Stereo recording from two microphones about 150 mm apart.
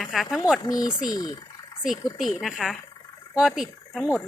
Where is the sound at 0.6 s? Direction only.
25° left (ahead or behind).